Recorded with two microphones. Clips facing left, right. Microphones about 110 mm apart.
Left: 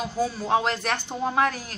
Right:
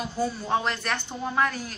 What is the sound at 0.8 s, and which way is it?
Speech, 40° left (ahead or behind).